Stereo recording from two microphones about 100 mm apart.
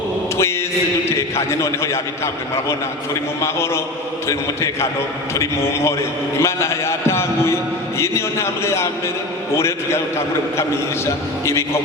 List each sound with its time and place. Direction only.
1.1 s a man's voice: 25° left (ahead or behind)